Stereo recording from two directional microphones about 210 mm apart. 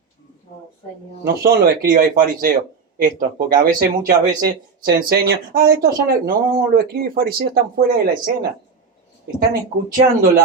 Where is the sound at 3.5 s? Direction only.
45° right (ahead or behind).